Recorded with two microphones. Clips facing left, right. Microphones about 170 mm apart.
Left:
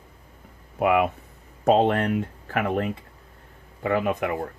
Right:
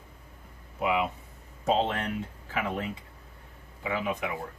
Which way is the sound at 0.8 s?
60° left (ahead or behind).